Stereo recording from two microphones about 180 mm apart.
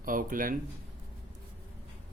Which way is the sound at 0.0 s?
50° right (ahead or behind).